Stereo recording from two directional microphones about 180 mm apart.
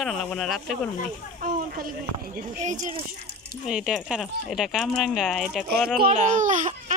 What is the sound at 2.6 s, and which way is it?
Speech, 45° right (ahead or behind).